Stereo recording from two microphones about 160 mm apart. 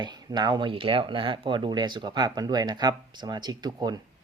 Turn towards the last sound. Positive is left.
turn(degrees=-25)  # may be behind; listen again after turning